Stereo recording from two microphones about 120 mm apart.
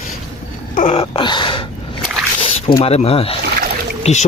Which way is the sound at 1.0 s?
45° left (ahead or behind).